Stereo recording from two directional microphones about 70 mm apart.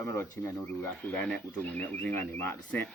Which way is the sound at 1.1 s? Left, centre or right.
Centre.